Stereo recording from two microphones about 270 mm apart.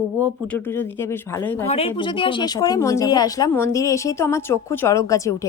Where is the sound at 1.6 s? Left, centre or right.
Left.